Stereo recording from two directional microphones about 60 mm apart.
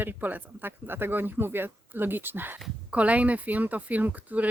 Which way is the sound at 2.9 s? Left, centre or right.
Right.